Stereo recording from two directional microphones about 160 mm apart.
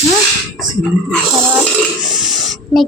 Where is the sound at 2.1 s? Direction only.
Centre (ahead or behind).